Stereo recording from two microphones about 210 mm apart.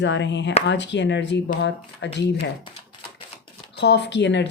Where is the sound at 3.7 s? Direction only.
55° left (ahead or behind).